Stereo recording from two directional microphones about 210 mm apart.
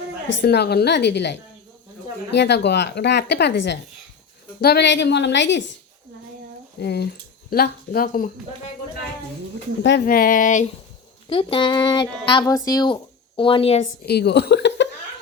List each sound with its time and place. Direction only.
0.4 s a woman's voice: 50° left (ahead or behind)
6.7 s speech: 50° left (ahead or behind)
9.8 s speech: 50° left (ahead or behind)
11.3 s speech: 25° left (ahead or behind)
14.0 s speech: 50° left (ahead or behind)